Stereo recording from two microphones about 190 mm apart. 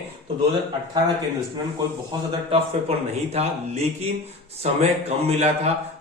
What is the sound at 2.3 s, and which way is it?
A man's voice, 30° right (ahead or behind).